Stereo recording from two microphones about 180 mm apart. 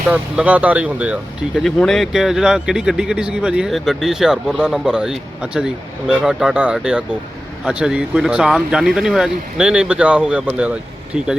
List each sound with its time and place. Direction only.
0.1 s speech: 10° right (ahead or behind)